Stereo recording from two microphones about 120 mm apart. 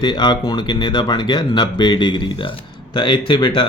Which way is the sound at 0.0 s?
35° left (ahead or behind).